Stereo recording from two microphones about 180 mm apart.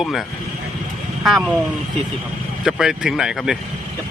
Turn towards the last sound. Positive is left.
turn(degrees=-5)  # may be behind; listen again after turning